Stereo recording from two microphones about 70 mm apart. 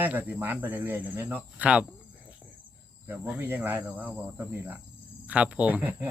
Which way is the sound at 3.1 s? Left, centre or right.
Right.